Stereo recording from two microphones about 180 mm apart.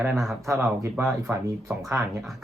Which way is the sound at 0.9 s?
Centre (ahead or behind).